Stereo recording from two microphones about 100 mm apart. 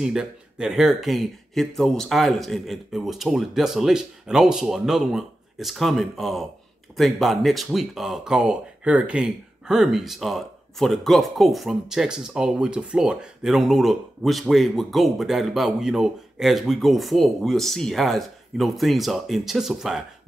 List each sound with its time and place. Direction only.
0.0 s speech: 5° right (ahead or behind)